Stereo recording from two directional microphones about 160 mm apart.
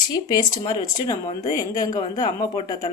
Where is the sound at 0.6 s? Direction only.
25° left (ahead or behind).